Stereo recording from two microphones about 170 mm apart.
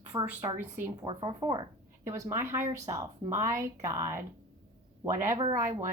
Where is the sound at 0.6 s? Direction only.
10° right (ahead or behind).